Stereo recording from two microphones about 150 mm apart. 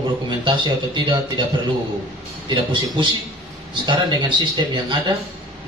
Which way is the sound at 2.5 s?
30° right (ahead or behind).